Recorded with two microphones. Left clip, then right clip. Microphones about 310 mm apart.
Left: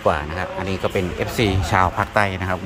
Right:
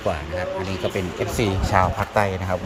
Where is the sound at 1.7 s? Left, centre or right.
Left.